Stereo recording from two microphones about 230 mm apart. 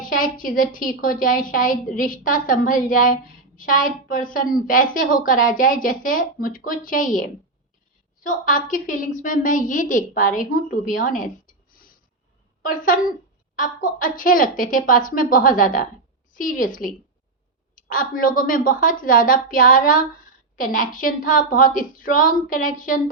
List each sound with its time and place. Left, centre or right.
0.0 s a woman's voice: left